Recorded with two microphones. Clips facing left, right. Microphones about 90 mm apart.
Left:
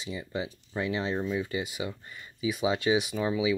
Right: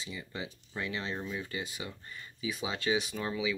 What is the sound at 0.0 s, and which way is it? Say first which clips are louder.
Speech: left 6 dB; 20° left (ahead or behind).